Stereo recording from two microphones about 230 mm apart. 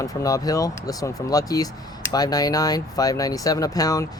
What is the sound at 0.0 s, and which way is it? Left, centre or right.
Speech, centre.